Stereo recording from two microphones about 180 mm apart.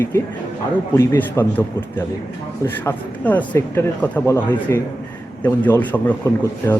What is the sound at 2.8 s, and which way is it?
A man's voice, 10° left (ahead or behind).